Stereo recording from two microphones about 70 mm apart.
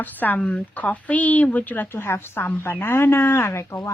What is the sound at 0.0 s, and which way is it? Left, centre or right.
Speech, left.